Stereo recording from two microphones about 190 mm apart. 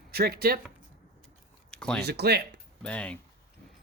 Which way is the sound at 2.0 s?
60° right (ahead or behind).